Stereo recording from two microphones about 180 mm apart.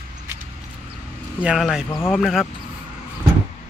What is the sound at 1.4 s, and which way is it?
Speech, centre (ahead or behind).